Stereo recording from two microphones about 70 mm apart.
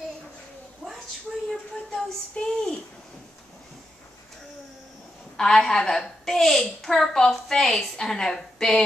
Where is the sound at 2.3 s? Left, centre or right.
Centre.